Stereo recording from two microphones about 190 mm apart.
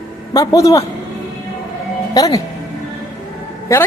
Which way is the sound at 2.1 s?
20° left (ahead or behind).